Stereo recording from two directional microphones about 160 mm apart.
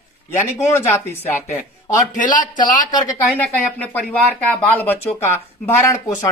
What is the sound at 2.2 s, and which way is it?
Speech, 55° left (ahead or behind).